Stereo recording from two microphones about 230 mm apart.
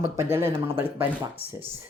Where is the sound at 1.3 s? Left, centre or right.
Right.